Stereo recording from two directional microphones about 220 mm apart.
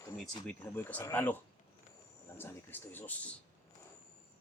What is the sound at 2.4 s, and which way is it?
Speech, 10° left (ahead or behind).